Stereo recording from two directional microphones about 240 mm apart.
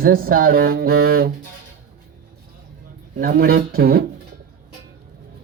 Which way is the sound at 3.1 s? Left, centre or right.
Right.